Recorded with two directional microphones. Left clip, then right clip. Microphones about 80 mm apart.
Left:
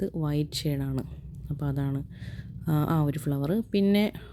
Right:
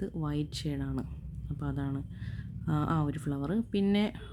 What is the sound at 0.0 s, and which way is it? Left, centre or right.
Speech, left.